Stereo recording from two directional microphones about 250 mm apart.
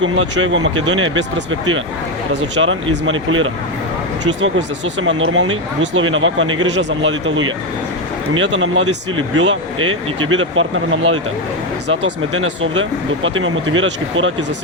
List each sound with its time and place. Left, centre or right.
0.0 s speech: right
2.6 s speech: right
4.9 s speech: right